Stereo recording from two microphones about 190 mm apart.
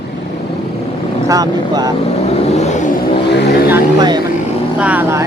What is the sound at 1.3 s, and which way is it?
Speech, 20° right (ahead or behind).